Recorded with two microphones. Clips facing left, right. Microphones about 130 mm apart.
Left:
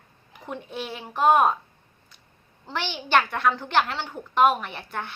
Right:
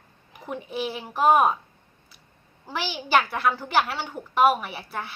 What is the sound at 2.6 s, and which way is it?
A woman's voice, 5° right (ahead or behind).